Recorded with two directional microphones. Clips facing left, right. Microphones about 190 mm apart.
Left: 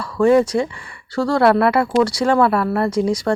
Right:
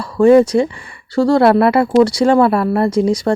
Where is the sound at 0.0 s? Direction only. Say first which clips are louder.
Right 5 dB; 25° right (ahead or behind).